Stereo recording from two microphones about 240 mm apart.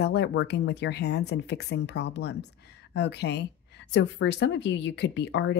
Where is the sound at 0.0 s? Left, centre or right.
Left.